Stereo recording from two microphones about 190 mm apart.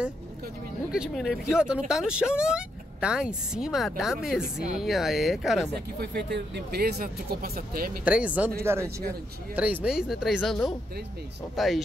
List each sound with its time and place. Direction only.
0.9 s speech: centre (ahead or behind)
5.9 s speech: 60° right (ahead or behind)
8.0 s speech: 5° right (ahead or behind)